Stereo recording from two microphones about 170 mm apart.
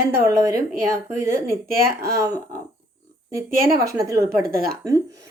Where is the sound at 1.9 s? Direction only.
65° right (ahead or behind).